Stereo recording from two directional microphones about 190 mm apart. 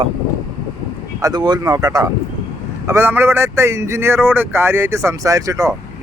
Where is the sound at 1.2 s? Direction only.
20° right (ahead or behind).